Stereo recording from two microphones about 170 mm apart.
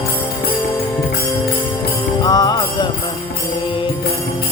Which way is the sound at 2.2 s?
25° left (ahead or behind).